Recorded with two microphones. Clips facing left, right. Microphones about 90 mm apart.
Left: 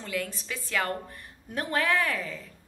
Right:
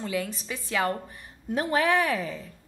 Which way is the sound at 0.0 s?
20° right (ahead or behind).